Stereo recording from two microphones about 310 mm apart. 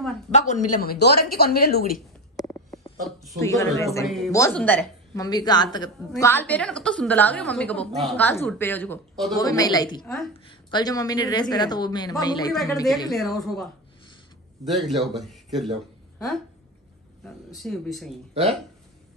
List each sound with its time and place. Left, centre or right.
0.3 s a woman's voice: left
2.3 s a sound: centre
3.3 s a woman's voice: centre
9.4 s a woman's voice: centre
17.2 s a woman's voice: centre